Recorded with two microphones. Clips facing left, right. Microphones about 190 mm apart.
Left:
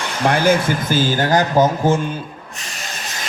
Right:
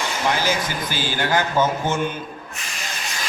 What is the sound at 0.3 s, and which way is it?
Speech, 55° left (ahead or behind).